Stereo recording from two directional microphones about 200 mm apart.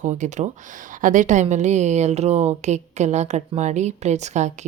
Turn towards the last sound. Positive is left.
turn(degrees=-35)  # may be behind; listen again after turning